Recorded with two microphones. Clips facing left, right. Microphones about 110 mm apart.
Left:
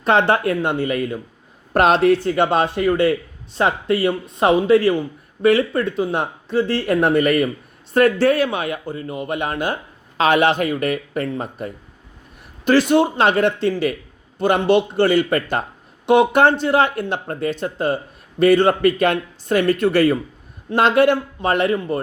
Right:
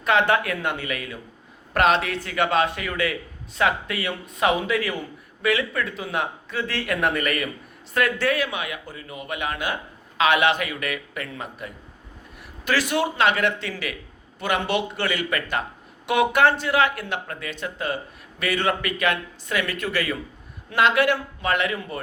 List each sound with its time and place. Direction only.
0.0 s speech: 30° left (ahead or behind)
12.9 s speech: 35° left (ahead or behind)